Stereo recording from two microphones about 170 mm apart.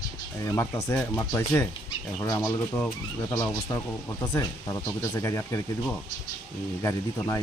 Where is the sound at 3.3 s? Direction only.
20° left (ahead or behind).